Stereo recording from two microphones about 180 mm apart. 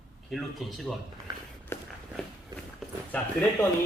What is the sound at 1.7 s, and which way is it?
Walk, 15° left (ahead or behind).